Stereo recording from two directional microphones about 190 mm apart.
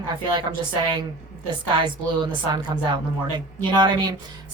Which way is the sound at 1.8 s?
25° right (ahead or behind).